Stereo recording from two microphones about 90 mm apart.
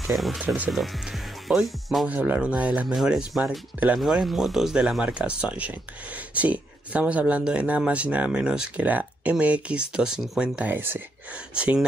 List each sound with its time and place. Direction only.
0.0 s speech: centre (ahead or behind)
2.0 s speech: 20° right (ahead or behind)